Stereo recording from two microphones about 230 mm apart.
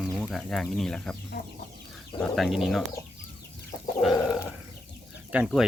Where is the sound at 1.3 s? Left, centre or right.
Left.